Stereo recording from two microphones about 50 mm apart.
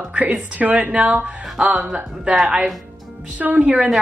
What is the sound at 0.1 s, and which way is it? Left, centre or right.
Speech, right.